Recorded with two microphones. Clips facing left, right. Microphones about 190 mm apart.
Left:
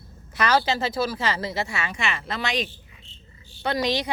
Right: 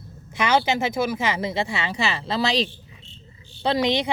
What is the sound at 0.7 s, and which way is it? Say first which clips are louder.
Speech: right 2 dB; 20° right (ahead or behind).